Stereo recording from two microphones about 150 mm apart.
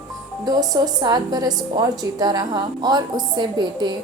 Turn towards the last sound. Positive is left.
turn(degrees=-30)  # may be behind; listen again after turning